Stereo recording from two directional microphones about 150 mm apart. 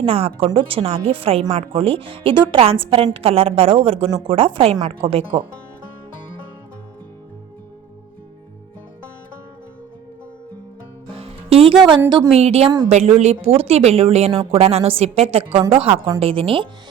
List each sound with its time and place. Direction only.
0.0 s speech: 40° right (ahead or behind)
11.1 s music: 40° right (ahead or behind)
11.9 s speech: 30° right (ahead or behind)
12.3 s speech: 45° right (ahead or behind)